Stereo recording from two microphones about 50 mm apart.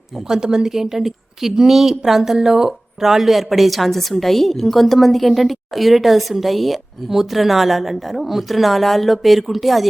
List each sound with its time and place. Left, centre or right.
0.3 s a woman's voice: centre